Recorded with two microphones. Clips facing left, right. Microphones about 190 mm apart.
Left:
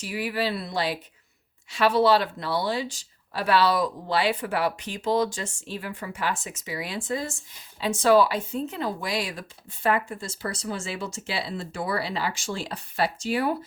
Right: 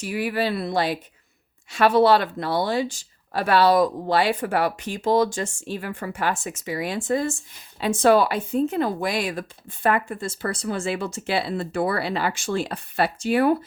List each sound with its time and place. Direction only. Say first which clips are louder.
0.0 s speech: right 3 dB; 50° right (ahead or behind)